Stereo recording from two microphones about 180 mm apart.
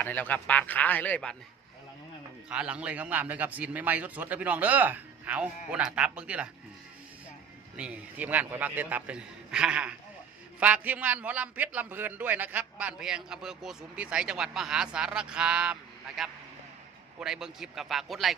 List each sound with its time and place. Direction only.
0.0 s a man's voice: 10° left (ahead or behind)
2.5 s a man's voice: 5° right (ahead or behind)
7.8 s a man's voice: 5° right (ahead or behind)